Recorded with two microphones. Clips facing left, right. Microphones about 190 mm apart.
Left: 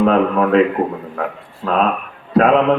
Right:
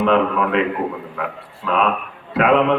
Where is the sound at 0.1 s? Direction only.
40° left (ahead or behind).